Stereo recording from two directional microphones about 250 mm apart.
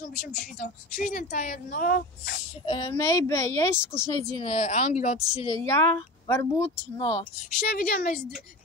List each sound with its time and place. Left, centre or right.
0.6 s speech: left
2.6 s speech: centre
4.3 s speech: left
6.2 s speech: centre
7.5 s speech: left